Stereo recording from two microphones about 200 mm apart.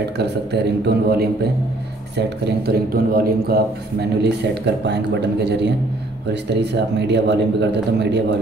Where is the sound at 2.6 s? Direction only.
50° right (ahead or behind).